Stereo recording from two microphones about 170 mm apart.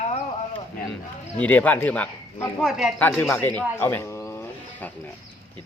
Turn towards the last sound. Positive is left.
turn(degrees=10)  # may be behind; listen again after turning